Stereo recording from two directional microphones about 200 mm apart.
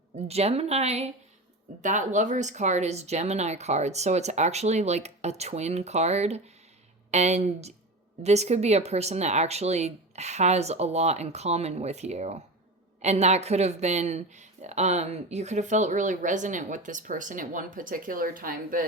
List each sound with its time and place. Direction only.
0.3 s speech: 30° right (ahead or behind)